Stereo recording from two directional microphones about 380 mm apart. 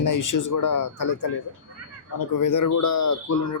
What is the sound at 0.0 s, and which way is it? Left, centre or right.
Speech, left.